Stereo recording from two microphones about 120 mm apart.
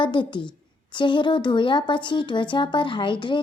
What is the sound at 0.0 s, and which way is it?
Speech, 40° left (ahead or behind).